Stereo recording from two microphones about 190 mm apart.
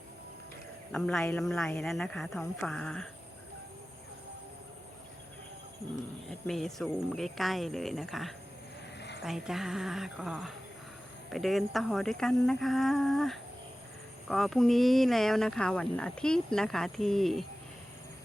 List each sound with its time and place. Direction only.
0.9 s speech: centre (ahead or behind)
6.2 s speech: centre (ahead or behind)
9.0 s a sound: 65° left (ahead or behind)
9.2 s speech: centre (ahead or behind)